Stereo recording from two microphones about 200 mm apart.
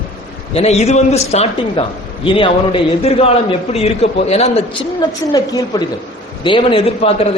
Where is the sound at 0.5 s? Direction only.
30° left (ahead or behind).